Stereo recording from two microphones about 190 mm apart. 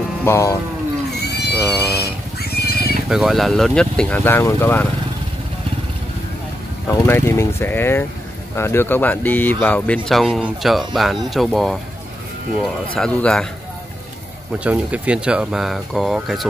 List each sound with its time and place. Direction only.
0.2 s speech: 15° left (ahead or behind)
1.2 s goat: 60° left (ahead or behind)
2.4 s neigh: 55° left (ahead or behind)
3.1 s speech: centre (ahead or behind)
6.9 s speech: 15° left (ahead or behind)
12.9 s speech: 5° left (ahead or behind)
14.6 s speech: 5° right (ahead or behind)